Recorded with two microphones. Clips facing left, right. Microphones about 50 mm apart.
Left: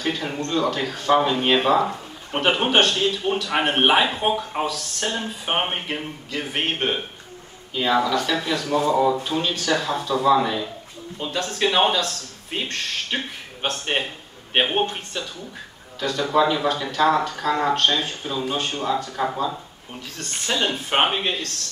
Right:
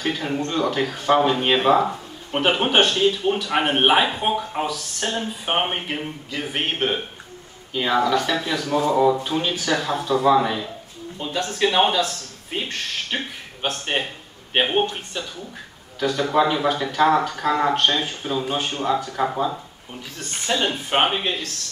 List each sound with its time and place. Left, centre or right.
0.0 s speech: centre
3.4 s speech: centre
16.3 s speech: centre